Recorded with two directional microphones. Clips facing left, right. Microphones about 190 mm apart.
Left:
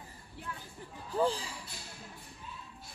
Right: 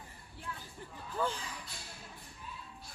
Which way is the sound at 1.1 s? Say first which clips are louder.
Left 5 dB; 35° left (ahead or behind).